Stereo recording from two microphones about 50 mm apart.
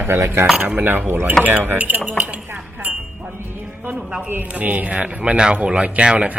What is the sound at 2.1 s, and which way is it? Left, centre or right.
Chink, right.